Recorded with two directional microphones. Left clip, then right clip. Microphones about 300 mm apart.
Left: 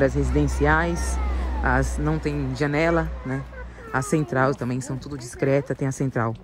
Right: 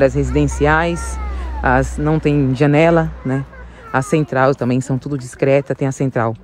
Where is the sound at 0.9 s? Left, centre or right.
Centre.